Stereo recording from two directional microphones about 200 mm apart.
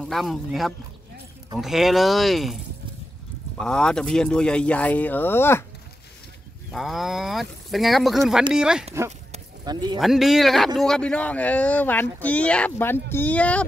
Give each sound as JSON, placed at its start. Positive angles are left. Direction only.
{"t": 0.0, "sound": "speech", "side_deg": 0}
{"t": 6.7, "sound": "speech", "side_deg": 0}
{"t": 9.7, "sound": "speech", "side_deg": -20}
{"t": 9.9, "sound": "speech", "side_deg": 0}